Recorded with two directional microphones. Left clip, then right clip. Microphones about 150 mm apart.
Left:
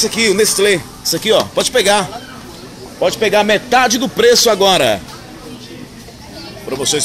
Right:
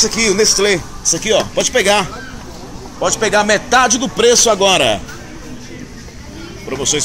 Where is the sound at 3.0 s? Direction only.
60° left (ahead or behind).